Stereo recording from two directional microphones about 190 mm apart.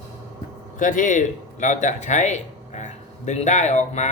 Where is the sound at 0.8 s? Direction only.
40° left (ahead or behind).